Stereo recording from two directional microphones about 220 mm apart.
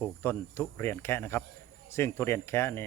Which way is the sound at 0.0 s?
10° left (ahead or behind).